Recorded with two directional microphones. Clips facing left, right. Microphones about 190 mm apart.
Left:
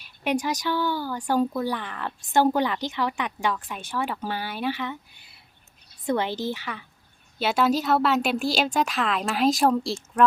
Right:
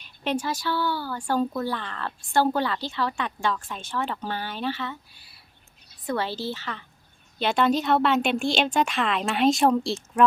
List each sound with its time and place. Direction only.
0.0 s a woman's voice: 15° left (ahead or behind)